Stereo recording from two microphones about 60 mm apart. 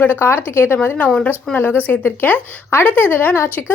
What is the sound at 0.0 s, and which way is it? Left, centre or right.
A woman's voice, left.